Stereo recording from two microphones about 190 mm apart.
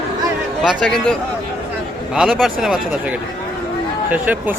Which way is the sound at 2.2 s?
Centre (ahead or behind).